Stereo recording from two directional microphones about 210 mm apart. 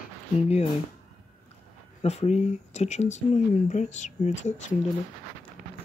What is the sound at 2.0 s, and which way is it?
Speech, 30° left (ahead or behind).